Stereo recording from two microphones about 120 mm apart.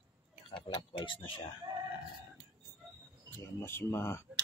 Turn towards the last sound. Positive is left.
turn(degrees=20)  # may be behind; listen again after turning